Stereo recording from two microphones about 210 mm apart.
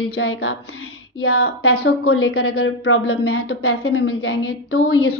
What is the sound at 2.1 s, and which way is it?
A woman's voice, 85° left.